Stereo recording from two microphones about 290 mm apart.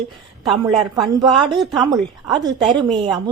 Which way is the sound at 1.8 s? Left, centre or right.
Centre.